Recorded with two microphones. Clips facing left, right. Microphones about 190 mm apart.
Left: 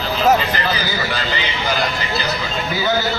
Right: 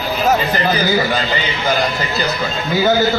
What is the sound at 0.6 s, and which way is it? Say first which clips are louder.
Speech: right 6 dB; 45° right (ahead or behind).